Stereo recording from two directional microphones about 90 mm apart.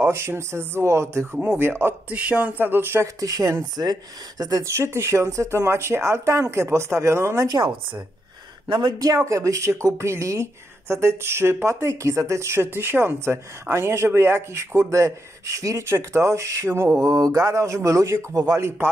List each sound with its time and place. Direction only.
0.0 s speech: 25° right (ahead or behind)
3.2 s speech: 40° right (ahead or behind)
8.6 s speech: 65° right (ahead or behind)
9.0 s speech: 35° right (ahead or behind)